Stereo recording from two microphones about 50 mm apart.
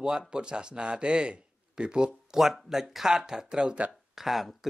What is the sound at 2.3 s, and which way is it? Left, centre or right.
Speech, centre.